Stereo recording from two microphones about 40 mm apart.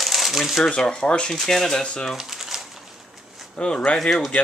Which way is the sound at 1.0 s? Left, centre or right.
Left.